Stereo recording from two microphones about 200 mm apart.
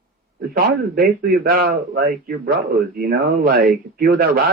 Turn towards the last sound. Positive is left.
turn(degrees=-50)  # may be behind; listen again after turning